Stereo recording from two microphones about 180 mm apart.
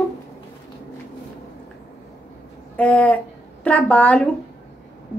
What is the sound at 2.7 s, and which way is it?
Speech, 10° left (ahead or behind).